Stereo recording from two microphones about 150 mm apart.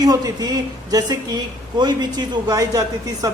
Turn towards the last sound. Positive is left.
turn(degrees=-25)  # may be behind; listen again after turning